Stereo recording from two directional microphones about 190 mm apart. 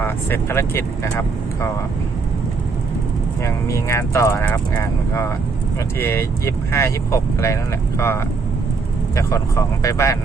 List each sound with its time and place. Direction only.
0.0 s speech: 10° left (ahead or behind)
3.4 s speech: 15° left (ahead or behind)